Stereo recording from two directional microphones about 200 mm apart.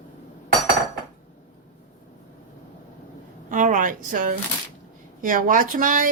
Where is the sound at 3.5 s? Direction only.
40° right (ahead or behind).